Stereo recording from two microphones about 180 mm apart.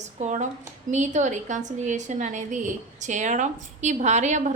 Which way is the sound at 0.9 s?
40° right (ahead or behind).